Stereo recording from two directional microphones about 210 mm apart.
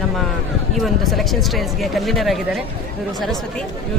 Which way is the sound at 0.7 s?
Centre (ahead or behind).